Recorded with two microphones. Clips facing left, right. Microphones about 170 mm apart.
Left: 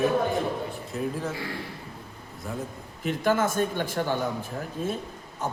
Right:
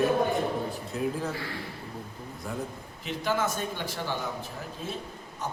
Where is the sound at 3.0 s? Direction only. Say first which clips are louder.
Left 5 dB; 50° left (ahead or behind).